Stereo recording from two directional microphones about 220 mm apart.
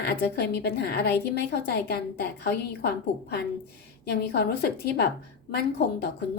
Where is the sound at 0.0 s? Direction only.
50° left (ahead or behind).